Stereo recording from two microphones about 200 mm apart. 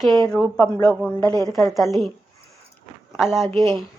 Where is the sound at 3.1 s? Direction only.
Centre (ahead or behind).